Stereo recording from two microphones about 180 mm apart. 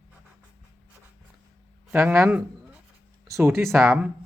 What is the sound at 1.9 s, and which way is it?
Speech, 10° right (ahead or behind).